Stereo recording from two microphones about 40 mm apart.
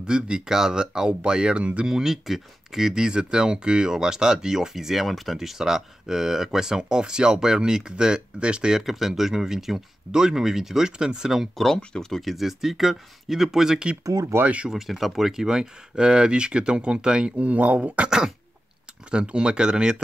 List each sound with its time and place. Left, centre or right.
0.0 s speech: right
1.6 s speech: right
1.9 s speech: centre
8.7 s speech: centre
11.5 s speech: centre
12.2 s speech: centre
14.3 s speech: right
14.7 s speech: centre
17.4 s speech: right